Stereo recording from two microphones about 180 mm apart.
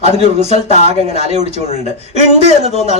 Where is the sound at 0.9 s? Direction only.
35° right (ahead or behind).